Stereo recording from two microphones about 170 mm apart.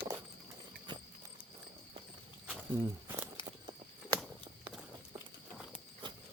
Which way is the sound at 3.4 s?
25° right (ahead or behind).